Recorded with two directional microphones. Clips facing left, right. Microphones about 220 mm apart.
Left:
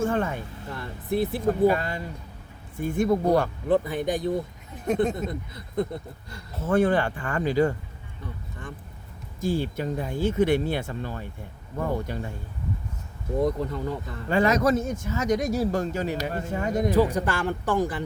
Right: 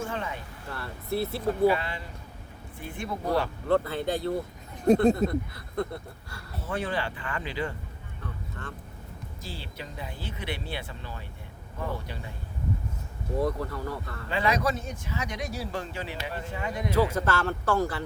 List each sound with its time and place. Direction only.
0.0 s music: 50° left (ahead or behind)
0.7 s speech: 15° left (ahead or behind)
1.4 s speech: 45° left (ahead or behind)
3.7 s speech: 15° left (ahead or behind)
6.6 s speech: 50° left (ahead or behind)
8.2 s speech: 15° left (ahead or behind)
9.4 s speech: 50° left (ahead or behind)
13.4 s speech: 20° left (ahead or behind)
14.3 s speech: 45° left (ahead or behind)
16.9 s speech: 15° left (ahead or behind)